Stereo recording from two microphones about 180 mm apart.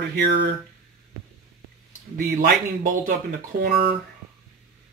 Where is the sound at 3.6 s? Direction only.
65° right (ahead or behind).